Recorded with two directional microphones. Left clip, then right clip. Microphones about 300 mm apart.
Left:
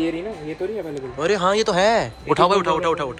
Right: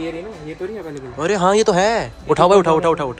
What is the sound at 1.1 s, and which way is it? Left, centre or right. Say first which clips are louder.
Speech: right 3 dB; centre.